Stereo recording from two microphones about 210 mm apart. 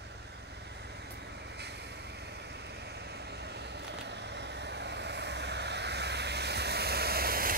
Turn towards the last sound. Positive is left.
turn(degrees=-45)  # may be behind; listen again after turning